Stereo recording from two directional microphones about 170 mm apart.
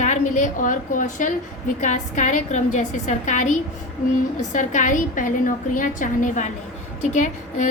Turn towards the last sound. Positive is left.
turn(degrees=45)  # may be behind; listen again after turning